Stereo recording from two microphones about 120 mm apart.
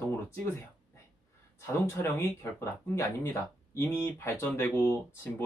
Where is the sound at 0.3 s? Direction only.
20° left (ahead or behind).